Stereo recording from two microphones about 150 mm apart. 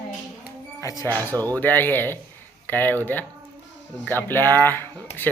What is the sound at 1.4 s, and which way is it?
Speech, 25° right (ahead or behind).